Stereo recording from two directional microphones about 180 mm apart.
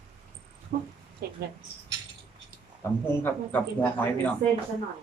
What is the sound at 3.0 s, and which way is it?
A man's voice, 10° left (ahead or behind).